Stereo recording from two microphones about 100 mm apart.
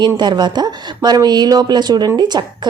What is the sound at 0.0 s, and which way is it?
A woman's voice, 45° right (ahead or behind).